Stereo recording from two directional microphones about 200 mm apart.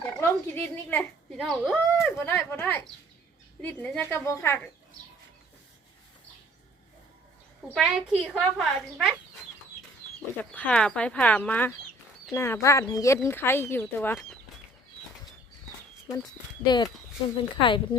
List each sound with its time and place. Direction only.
0.0 s speech: 10° left (ahead or behind)
7.7 s a woman's voice: 5° right (ahead or behind)
10.5 s speech: 5° left (ahead or behind)
16.6 s speech: 20° left (ahead or behind)